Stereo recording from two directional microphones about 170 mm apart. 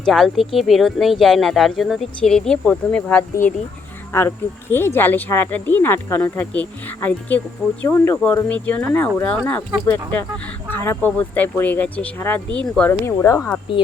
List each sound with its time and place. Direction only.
0.0 s speech: centre (ahead or behind); by 13.5 s 15° left (ahead or behind)
13.7 s speech: 30° left (ahead or behind)